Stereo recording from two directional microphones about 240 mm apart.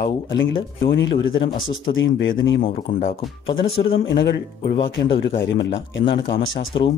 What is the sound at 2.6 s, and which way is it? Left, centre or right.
Speech, left.